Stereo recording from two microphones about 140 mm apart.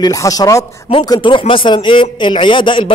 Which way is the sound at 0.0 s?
25° left (ahead or behind).